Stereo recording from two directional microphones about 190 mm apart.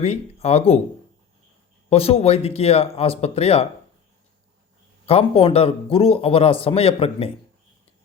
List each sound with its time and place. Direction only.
0.0 s a man's voice: 35° left (ahead or behind)
1.9 s a man's voice: 30° left (ahead or behind)
5.0 s a man's voice: 30° left (ahead or behind)